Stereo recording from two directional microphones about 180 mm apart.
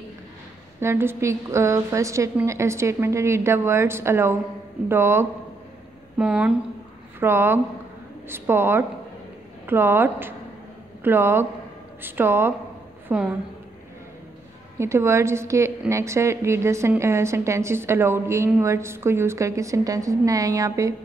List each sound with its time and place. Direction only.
0.7 s a woman's voice: 15° right (ahead or behind)
14.8 s a woman's voice: 15° right (ahead or behind)